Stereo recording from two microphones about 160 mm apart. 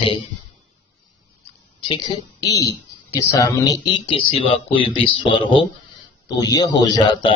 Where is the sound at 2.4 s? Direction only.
20° left (ahead or behind).